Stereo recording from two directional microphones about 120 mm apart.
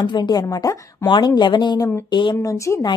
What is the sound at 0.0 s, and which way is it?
A woman's voice, 35° left (ahead or behind).